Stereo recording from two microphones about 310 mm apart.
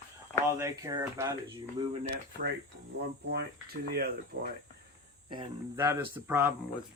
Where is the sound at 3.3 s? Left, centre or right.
Right.